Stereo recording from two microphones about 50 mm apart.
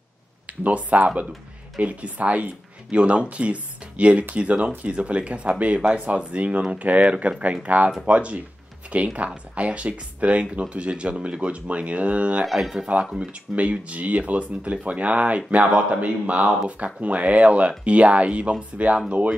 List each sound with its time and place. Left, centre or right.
0.5 s speech: right
12.4 s speech: centre
12.8 s speech: right